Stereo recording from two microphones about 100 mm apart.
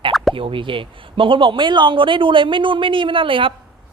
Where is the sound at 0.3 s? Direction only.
60° right (ahead or behind).